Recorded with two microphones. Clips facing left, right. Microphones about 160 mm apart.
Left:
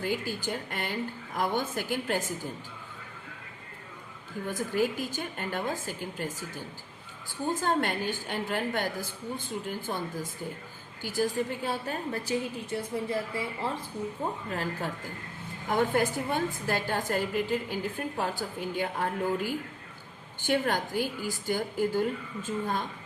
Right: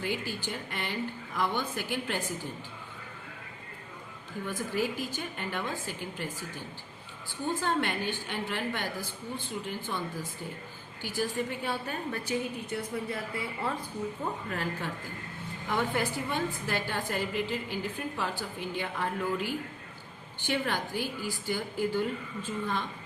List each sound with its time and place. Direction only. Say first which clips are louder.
0.0 s a woman's voice: left 2 dB; 45° left (ahead or behind)
4.4 s a woman's voice: left 3 dB; 45° left (ahead or behind)
7.6 s a woman's voice: left 2 dB; 45° left (ahead or behind); by 13.7 s 25° left (ahead or behind)
14.5 s a woman's voice: left 1 dB; 35° left (ahead or behind)